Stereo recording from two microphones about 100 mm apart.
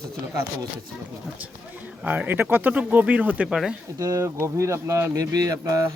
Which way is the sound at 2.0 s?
15° right (ahead or behind).